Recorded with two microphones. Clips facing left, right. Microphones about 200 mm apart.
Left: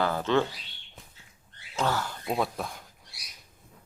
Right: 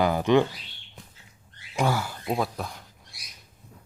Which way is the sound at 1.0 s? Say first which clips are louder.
Right 3 dB; centre (ahead or behind).